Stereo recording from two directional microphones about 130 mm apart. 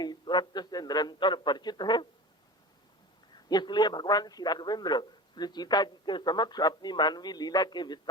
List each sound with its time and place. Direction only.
0.0 s a man's voice: 35° left (ahead or behind)
3.5 s a man's voice: 35° left (ahead or behind)